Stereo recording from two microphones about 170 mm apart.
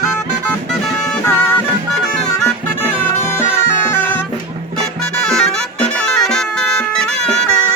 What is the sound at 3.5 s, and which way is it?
Bagpipes, 10° left (ahead or behind).